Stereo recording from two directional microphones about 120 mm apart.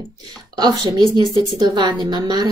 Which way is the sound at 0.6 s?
35° right (ahead or behind).